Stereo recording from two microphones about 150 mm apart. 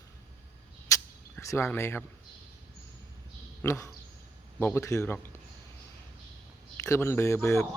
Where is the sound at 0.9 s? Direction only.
20° left (ahead or behind).